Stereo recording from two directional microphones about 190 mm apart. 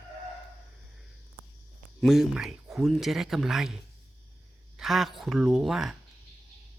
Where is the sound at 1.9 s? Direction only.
Centre (ahead or behind).